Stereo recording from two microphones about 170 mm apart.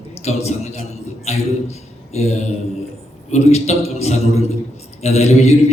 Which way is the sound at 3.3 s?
40° left (ahead or behind).